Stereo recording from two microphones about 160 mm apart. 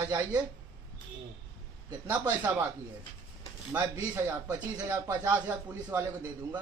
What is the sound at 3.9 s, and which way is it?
A man's voice, 20° right (ahead or behind).